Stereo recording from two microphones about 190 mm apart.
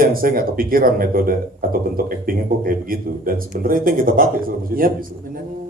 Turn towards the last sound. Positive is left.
turn(degrees=-50)  # may be behind; listen again after turning